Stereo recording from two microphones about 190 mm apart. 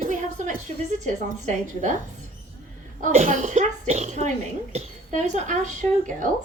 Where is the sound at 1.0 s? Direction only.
40° right (ahead or behind).